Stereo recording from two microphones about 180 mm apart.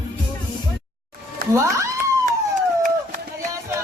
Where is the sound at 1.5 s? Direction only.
15° right (ahead or behind).